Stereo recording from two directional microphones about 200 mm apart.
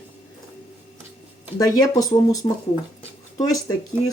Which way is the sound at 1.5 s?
20° left (ahead or behind).